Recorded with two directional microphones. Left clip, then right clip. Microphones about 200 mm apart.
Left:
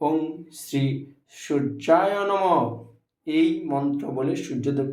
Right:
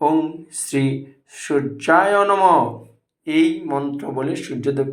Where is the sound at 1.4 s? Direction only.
10° right (ahead or behind).